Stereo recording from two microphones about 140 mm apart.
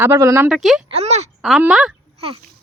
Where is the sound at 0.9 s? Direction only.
50° right (ahead or behind).